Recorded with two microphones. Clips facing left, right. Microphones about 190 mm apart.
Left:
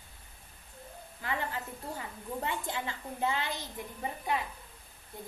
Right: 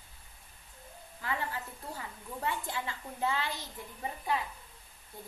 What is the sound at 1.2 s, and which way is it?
A woman's voice, 20° left (ahead or behind).